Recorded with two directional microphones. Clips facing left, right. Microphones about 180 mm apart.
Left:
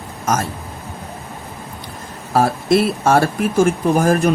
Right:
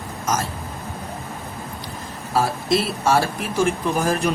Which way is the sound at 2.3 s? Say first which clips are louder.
Left 5 dB; 55° left (ahead or behind).